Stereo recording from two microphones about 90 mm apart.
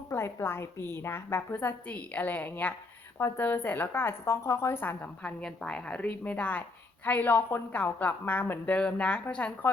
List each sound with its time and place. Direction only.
0.1 s a woman's voice: 30° left (ahead or behind)
5.2 s a woman's voice: 5° left (ahead or behind)